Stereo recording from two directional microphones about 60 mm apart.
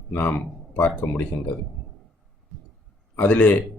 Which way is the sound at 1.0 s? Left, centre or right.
Left.